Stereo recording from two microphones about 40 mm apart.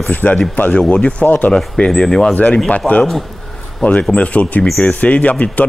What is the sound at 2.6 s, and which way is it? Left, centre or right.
Speech, left.